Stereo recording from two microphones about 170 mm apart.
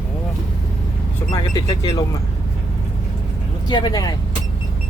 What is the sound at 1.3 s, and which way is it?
Speech, 25° left (ahead or behind).